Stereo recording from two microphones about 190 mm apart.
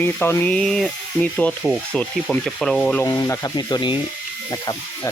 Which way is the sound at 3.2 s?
15° left (ahead or behind).